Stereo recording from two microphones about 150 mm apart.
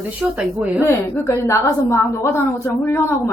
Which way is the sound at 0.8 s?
20° left (ahead or behind).